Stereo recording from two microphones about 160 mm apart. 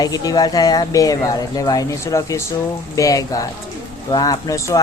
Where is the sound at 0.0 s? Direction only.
25° left (ahead or behind).